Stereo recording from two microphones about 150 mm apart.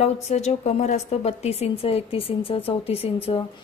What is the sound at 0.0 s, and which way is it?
A woman's voice, 45° left (ahead or behind).